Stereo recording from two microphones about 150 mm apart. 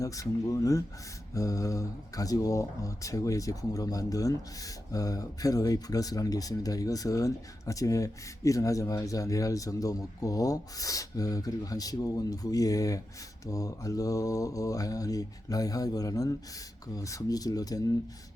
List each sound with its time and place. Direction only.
0.0 s speech: 25° left (ahead or behind)